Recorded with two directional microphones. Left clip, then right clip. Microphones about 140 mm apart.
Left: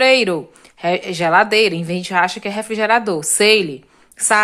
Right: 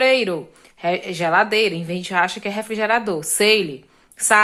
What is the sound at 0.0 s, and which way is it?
A woman's voice, 35° left (ahead or behind).